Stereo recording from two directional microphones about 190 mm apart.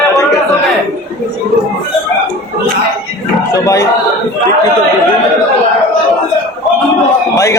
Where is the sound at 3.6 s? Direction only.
15° left (ahead or behind).